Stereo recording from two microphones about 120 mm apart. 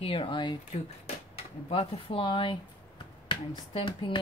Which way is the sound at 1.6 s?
50° left (ahead or behind).